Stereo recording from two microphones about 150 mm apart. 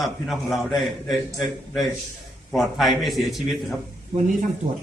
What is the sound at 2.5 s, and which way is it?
Speech, centre (ahead or behind).